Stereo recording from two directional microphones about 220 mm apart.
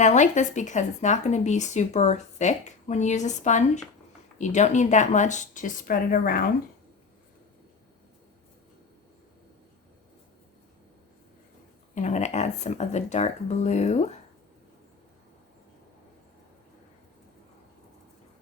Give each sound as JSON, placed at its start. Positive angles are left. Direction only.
{"t": 0.0, "sound": "speech", "side_deg": 35}
{"t": 11.9, "sound": "speech", "side_deg": 30}